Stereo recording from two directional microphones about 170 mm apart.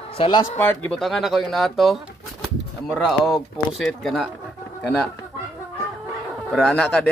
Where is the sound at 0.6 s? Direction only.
10° left (ahead or behind).